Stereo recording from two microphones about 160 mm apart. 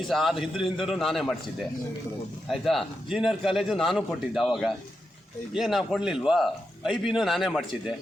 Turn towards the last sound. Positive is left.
turn(degrees=0)  # may be behind; listen again after turning